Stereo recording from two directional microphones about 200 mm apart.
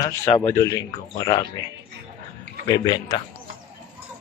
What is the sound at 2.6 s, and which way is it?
Speech, 20° left (ahead or behind).